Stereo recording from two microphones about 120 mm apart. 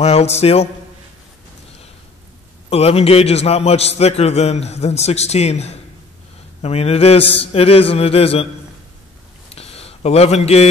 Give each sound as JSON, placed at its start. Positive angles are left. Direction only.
{"t": 0.0, "sound": "a man's voice", "side_deg": 60}
{"t": 2.7, "sound": "a man's voice", "side_deg": 55}
{"t": 9.5, "sound": "a sound", "side_deg": 55}